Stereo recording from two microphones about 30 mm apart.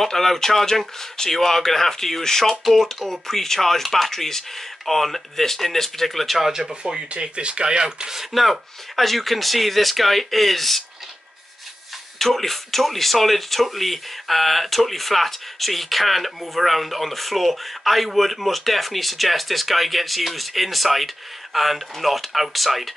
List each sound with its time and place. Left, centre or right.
0.0 s speech: centre
7.1 s speech: right
8.3 s speech: centre
12.2 s speech: centre